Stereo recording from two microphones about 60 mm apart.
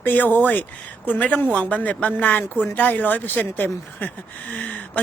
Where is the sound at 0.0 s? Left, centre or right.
Left.